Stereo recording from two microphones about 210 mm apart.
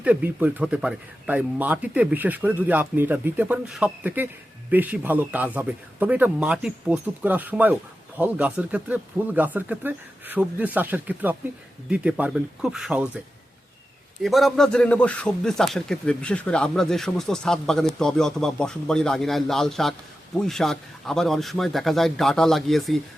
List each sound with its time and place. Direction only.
0.0 s a man's voice: 5° right (ahead or behind)
14.2 s a man's voice: centre (ahead or behind)